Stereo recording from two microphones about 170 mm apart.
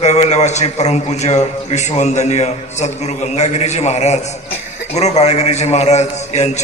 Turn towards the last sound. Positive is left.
turn(degrees=40)  # may be behind; listen again after turning